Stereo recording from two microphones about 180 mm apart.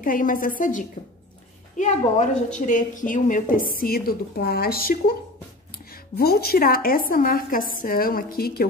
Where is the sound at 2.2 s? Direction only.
45° left (ahead or behind).